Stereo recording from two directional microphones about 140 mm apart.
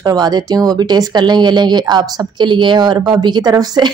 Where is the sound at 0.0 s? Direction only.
30° right (ahead or behind).